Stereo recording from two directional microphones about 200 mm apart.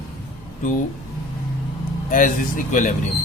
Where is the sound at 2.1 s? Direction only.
40° left (ahead or behind).